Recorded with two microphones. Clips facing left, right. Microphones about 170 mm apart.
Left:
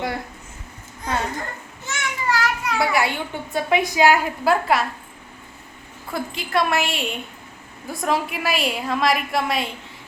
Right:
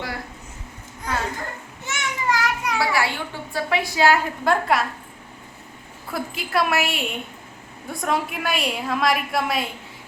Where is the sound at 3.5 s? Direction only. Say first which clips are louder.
Left 4 dB; 20° left (ahead or behind).